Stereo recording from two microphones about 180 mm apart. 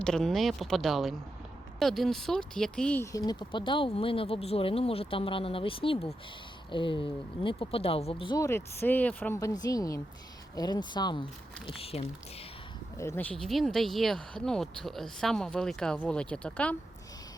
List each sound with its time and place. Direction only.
0.0 s speech: 5° left (ahead or behind)
3.0 s speech: 20° left (ahead or behind)
8.4 s speech: 15° left (ahead or behind); by 12.0 s 35° left (ahead or behind)
13.0 s speech: 10° left (ahead or behind)